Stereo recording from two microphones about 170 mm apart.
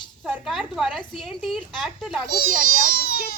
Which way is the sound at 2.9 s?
65° left (ahead or behind).